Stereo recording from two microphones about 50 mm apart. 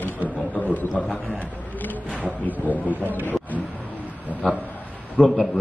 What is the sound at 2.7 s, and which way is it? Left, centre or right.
Speech, right.